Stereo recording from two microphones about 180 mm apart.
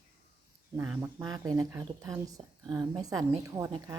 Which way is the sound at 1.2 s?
20° right (ahead or behind).